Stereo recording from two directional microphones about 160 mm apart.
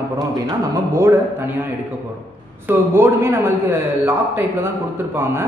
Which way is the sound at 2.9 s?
15° right (ahead or behind).